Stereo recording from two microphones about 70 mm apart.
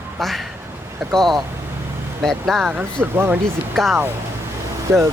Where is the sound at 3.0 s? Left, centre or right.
Right.